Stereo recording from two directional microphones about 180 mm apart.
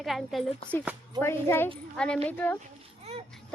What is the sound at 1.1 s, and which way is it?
A woman's voice, 15° left (ahead or behind).